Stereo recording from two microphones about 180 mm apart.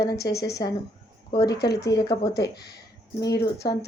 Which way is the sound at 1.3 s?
20° left (ahead or behind).